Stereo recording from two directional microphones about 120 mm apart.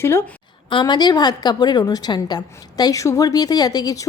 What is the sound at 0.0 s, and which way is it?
Speech, 20° left (ahead or behind).